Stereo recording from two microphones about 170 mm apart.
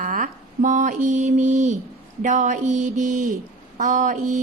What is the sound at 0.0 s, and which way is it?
Mantra, 50° right (ahead or behind).